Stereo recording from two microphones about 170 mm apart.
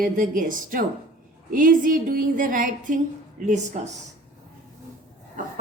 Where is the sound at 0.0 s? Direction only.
55° right (ahead or behind).